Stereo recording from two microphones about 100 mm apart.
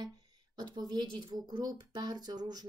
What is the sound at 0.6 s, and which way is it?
Speech, 45° right (ahead or behind).